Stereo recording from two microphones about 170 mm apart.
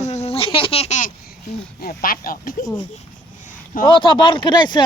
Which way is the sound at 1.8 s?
55° left (ahead or behind).